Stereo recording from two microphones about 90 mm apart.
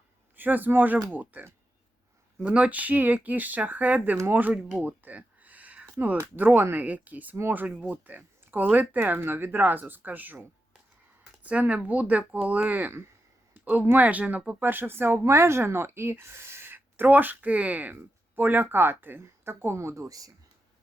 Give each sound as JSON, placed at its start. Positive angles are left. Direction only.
{"t": 0.3, "sound": "a man's voice", "side_deg": -20}
{"t": 11.4, "sound": "speech", "side_deg": -15}